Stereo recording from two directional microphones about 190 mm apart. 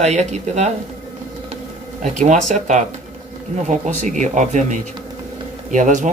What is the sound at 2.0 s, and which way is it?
Speech, 40° right (ahead or behind).